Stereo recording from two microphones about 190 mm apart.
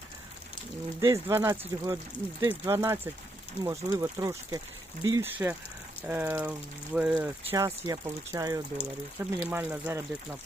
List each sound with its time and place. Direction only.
1.0 s speech: 15° right (ahead or behind)